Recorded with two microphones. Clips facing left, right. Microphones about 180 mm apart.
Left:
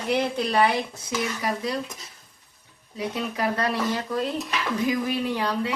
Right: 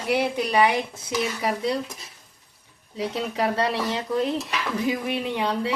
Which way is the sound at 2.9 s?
25° right (ahead or behind).